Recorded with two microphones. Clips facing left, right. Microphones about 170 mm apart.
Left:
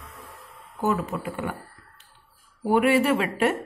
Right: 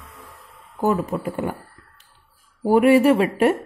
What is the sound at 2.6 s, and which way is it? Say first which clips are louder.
Speech: right 6 dB; 40° right (ahead or behind).